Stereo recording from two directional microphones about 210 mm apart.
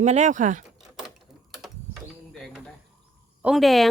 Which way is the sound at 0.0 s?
35° right (ahead or behind).